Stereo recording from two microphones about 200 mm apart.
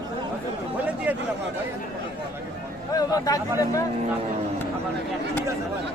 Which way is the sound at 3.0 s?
20° left (ahead or behind).